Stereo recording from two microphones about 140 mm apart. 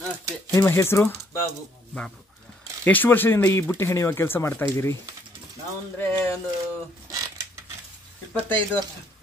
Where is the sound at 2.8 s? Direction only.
15° left (ahead or behind).